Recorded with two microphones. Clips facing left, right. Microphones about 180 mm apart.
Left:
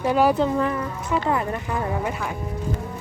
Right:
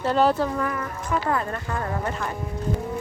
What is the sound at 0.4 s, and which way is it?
Speech, 20° left (ahead or behind).